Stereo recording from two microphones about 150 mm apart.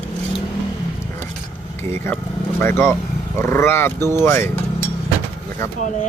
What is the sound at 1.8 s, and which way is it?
Speech, 15° left (ahead or behind).